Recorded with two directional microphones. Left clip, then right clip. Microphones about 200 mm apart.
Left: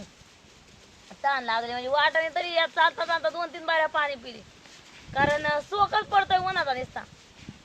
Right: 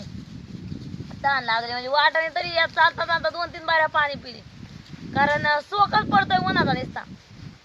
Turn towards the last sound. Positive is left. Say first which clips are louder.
# right 4 dB
turn(degrees=0)  # may be behind; listen again after turning